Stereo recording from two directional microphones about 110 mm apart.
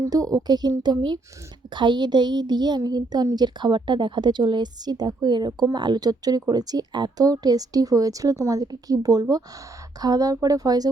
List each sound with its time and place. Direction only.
0.0 s a woman's voice: 35° right (ahead or behind)